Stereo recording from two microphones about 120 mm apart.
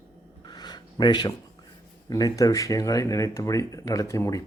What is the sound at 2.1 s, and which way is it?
Speech, 30° left (ahead or behind).